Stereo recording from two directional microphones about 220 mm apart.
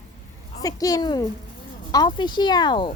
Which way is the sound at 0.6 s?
15° left (ahead or behind).